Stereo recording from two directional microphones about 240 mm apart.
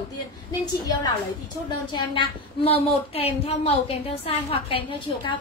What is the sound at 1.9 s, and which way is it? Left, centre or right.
Speech, left.